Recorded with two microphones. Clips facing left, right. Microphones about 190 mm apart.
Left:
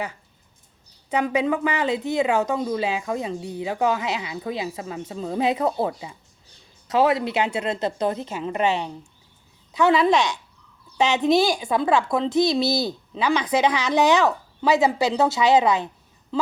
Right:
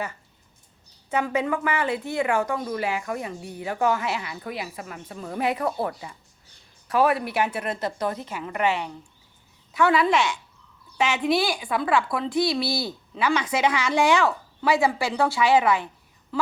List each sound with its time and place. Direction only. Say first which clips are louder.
1.1 s speech: left 3 dB; 15° left (ahead or behind)